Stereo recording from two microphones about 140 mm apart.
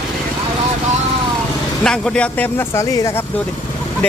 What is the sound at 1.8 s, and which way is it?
Speech, 5° left (ahead or behind).